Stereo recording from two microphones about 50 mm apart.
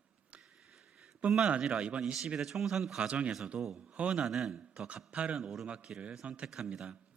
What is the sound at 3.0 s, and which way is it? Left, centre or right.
Speech, right.